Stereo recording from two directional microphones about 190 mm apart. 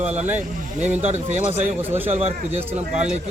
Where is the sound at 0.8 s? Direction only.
35° right (ahead or behind).